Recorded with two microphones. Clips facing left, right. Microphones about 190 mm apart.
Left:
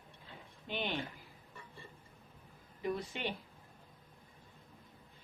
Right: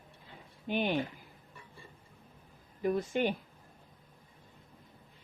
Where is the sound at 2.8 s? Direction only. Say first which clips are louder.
Right 8 dB; 50° right (ahead or behind).